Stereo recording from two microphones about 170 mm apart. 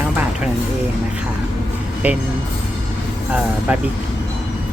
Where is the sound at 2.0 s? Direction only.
10° right (ahead or behind).